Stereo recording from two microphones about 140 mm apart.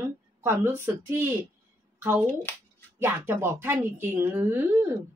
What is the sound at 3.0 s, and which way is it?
Speech, 15° right (ahead or behind).